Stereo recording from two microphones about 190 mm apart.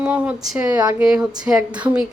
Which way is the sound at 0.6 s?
20° right (ahead or behind).